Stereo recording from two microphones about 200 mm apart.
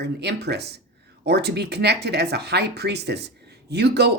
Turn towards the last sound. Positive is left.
turn(degrees=-55)  # may be behind; listen again after turning